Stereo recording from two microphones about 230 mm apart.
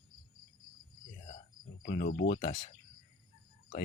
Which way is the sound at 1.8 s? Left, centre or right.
Left.